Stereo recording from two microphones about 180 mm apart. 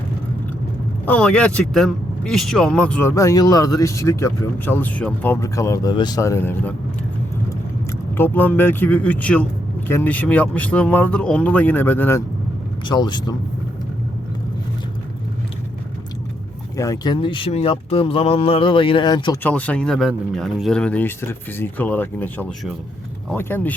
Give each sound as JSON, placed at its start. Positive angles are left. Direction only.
{"t": 1.0, "sound": "speech", "side_deg": 5}
{"t": 8.1, "sound": "speech", "side_deg": 10}
{"t": 12.8, "sound": "speech", "side_deg": 25}
{"t": 16.7, "sound": "speech", "side_deg": 20}
{"t": 19.4, "sound": "speech", "side_deg": 10}